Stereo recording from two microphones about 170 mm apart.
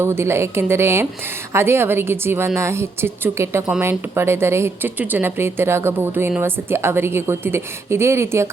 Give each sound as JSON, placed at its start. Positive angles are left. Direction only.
{"t": 0.0, "sound": "speech", "side_deg": -15}